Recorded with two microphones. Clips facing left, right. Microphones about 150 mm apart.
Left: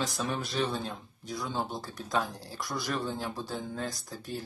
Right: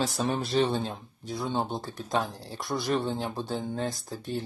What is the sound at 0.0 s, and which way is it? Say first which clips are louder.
Speech: right 4 dB; 35° right (ahead or behind).